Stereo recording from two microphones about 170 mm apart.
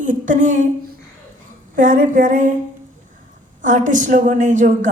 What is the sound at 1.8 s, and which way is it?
Speech, 50° right (ahead or behind).